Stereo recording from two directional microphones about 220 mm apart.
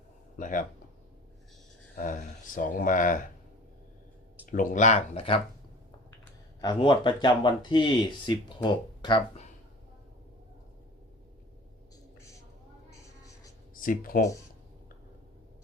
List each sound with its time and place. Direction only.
0.3 s speech: 35° left (ahead or behind)
2.6 s speech: 35° left (ahead or behind)
4.5 s speech: 35° left (ahead or behind)
6.6 s speech: 20° left (ahead or behind)
13.7 s speech: 40° left (ahead or behind)